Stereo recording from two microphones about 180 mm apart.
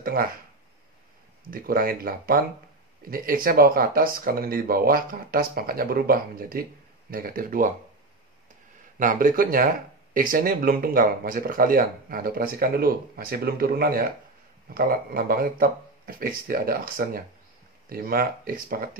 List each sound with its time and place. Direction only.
0.0 s speech: 55° right (ahead or behind)
1.5 s speech: 55° right (ahead or behind)
8.9 s speech: 50° right (ahead or behind)